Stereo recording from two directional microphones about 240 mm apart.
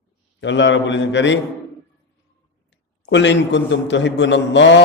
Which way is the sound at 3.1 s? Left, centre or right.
Left.